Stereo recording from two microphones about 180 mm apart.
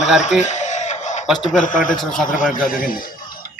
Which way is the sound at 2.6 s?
50° left (ahead or behind).